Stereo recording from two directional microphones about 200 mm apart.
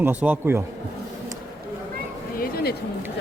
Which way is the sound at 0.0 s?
10° right (ahead or behind).